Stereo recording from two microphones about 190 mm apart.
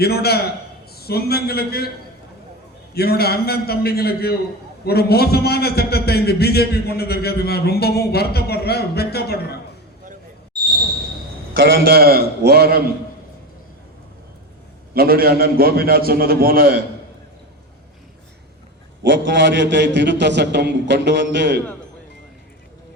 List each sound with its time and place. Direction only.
0.0 s a man's voice: 55° left (ahead or behind)
2.9 s a man's voice: 55° left (ahead or behind)
11.9 s a man's voice: 55° right (ahead or behind)
14.9 s a man's voice: 50° right (ahead or behind)
19.0 s a man's voice: 75° right (ahead or behind)